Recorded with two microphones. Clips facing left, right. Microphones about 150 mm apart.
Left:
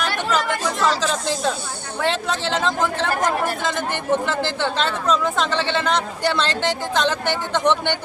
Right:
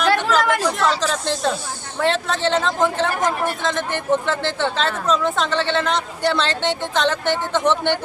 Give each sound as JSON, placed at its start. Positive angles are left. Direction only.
{"t": 0.1, "sound": "chatter", "side_deg": -90}
{"t": 2.0, "sound": "speech", "side_deg": 0}